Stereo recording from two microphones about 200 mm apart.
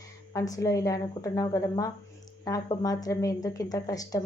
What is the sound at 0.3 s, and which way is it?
Speech, 15° left (ahead or behind).